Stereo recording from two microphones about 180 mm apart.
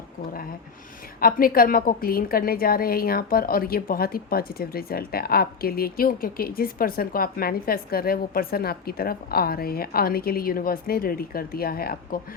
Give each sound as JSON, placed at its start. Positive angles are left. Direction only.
{"t": 1.2, "sound": "a woman's voice", "side_deg": 55}